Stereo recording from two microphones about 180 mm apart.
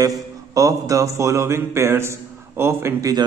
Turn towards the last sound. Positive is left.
turn(degrees=-15)  # may be behind; listen again after turning